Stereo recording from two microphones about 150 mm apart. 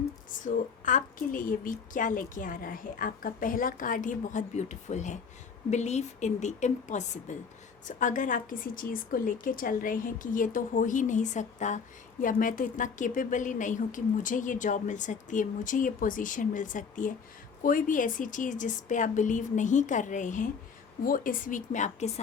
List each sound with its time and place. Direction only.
0.4 s a woman's voice: 60° left (ahead or behind)
12.2 s a woman's voice: 65° left (ahead or behind)
21.0 s a woman's voice: 65° left (ahead or behind); by 22.1 s 50° left (ahead or behind)